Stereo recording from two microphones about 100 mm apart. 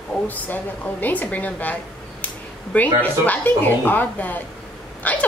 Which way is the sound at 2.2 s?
15° left (ahead or behind).